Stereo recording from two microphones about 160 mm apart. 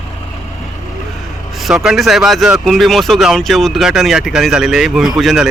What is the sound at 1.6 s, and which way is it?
Speech, centre (ahead or behind).